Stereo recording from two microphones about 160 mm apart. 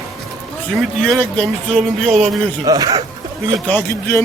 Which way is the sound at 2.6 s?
20° right (ahead or behind).